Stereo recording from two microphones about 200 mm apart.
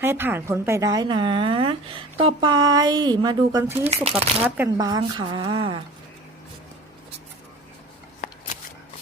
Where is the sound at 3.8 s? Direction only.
30° right (ahead or behind).